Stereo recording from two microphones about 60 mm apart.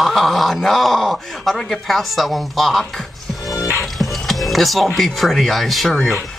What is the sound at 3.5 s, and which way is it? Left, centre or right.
Music, left.